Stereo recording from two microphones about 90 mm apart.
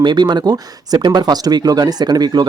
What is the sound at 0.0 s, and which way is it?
Speech, 50° right (ahead or behind).